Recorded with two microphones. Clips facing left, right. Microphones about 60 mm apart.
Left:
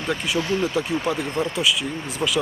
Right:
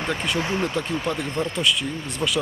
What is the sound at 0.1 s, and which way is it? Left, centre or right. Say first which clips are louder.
Speech: left 3 dB; centre.